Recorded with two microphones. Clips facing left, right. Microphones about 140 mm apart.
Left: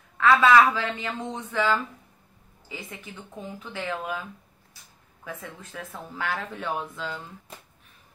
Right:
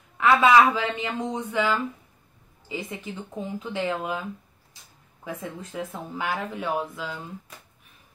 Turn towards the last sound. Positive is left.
turn(degrees=-10)  # may be behind; listen again after turning